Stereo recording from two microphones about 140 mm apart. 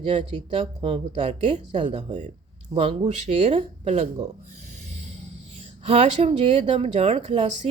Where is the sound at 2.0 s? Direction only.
55° right (ahead or behind).